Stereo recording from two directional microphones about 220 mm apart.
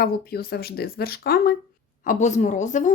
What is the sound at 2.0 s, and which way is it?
Speech, 35° left (ahead or behind).